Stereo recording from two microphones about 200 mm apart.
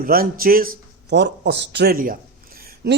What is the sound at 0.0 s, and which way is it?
Speech, 45° right (ahead or behind).